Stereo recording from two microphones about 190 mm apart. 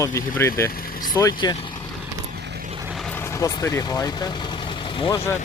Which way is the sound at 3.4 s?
15° left (ahead or behind).